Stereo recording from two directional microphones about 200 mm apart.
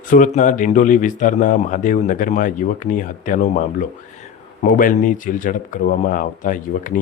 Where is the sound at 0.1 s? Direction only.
40° left (ahead or behind).